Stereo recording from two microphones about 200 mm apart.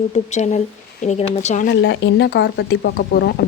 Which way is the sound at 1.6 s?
65° left (ahead or behind).